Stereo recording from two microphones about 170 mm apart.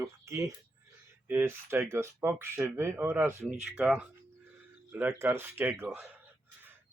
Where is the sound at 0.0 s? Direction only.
20° right (ahead or behind).